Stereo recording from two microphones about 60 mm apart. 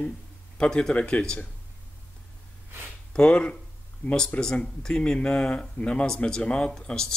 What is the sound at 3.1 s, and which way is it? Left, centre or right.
Speech, centre.